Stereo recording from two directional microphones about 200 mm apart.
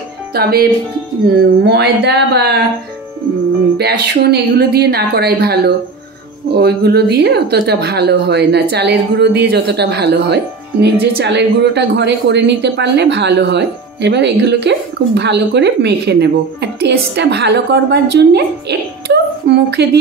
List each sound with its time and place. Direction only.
0.3 s a woman's voice: 50° right (ahead or behind)
3.7 s a woman's voice: 55° right (ahead or behind)